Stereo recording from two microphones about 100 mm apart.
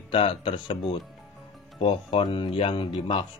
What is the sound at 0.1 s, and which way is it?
Speech, 60° left (ahead or behind).